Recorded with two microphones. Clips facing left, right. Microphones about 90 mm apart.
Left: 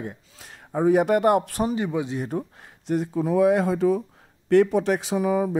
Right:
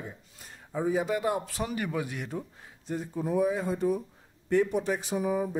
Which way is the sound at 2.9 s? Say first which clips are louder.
Left 8 dB; 85° left.